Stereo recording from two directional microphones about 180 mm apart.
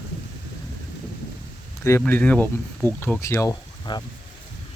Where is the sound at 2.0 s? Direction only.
10° left (ahead or behind).